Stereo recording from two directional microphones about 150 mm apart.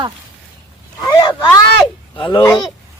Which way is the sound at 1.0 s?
30° left (ahead or behind).